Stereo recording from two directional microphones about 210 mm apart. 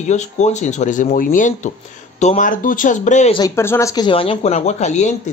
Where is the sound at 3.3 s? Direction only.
15° left (ahead or behind); by 5.3 s 35° left (ahead or behind).